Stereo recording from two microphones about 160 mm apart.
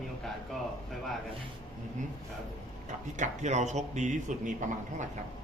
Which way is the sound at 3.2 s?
45° right (ahead or behind).